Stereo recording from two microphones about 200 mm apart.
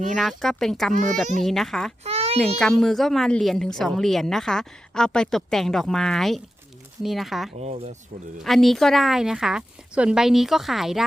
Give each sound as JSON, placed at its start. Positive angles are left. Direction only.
{"t": 0.2, "sound": "a woman's voice", "side_deg": 0}
{"t": 2.0, "sound": "a sound", "side_deg": -30}
{"t": 2.4, "sound": "a woman's voice", "side_deg": 0}
{"t": 7.6, "sound": "speech", "side_deg": -35}
{"t": 8.4, "sound": "a woman's voice", "side_deg": 0}